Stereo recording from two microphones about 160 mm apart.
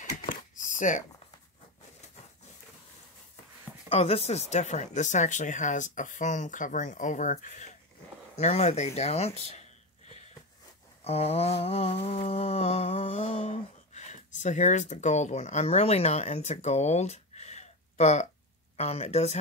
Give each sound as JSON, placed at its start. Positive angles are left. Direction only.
{"t": 0.0, "sound": "a sound", "side_deg": 50}
{"t": 3.9, "sound": "speech", "side_deg": 40}
{"t": 11.1, "sound": "mantra", "side_deg": 40}
{"t": 18.8, "sound": "speech", "side_deg": 40}